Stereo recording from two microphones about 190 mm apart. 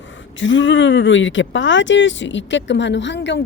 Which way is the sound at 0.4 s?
80° left.